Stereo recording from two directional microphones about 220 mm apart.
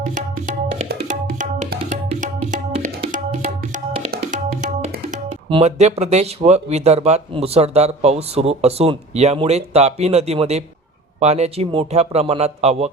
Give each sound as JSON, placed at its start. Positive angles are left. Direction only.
{"t": 0.0, "sound": "tabla", "side_deg": -35}
{"t": 3.6, "sound": "music", "side_deg": -30}
{"t": 5.5, "sound": "speech", "side_deg": -25}